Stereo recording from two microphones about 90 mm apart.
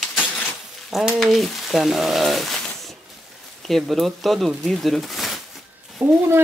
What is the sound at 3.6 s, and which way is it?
Speech, centre (ahead or behind).